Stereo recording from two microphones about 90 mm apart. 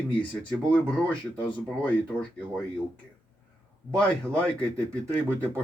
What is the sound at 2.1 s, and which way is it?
Speech, 10° left (ahead or behind).